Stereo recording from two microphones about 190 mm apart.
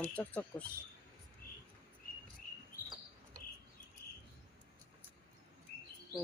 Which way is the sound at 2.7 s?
50° left (ahead or behind).